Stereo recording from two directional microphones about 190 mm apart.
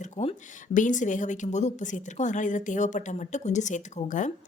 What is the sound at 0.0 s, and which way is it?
A woman's voice, 35° left (ahead or behind).